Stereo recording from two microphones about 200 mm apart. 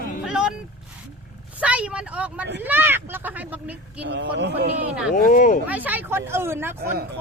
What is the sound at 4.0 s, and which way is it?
Speech, 60° right (ahead or behind).